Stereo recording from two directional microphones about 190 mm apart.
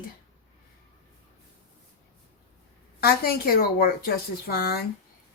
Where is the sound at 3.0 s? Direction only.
55° left (ahead or behind).